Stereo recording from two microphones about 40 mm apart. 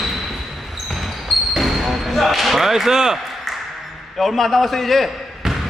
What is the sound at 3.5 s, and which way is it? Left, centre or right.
Ping, centre.